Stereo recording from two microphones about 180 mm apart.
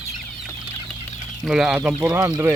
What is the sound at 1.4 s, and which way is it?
Speech, centre (ahead or behind).